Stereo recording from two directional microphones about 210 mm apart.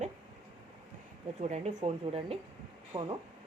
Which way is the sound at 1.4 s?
35° right (ahead or behind).